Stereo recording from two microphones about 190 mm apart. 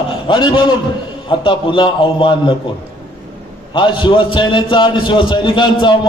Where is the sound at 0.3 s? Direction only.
25° left (ahead or behind).